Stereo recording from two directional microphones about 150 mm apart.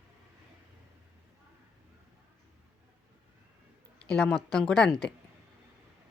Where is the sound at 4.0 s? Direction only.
5° left (ahead or behind).